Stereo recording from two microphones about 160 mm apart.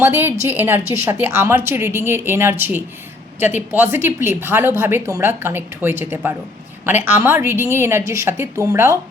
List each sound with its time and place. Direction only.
0.0 s a woman's voice: 15° right (ahead or behind)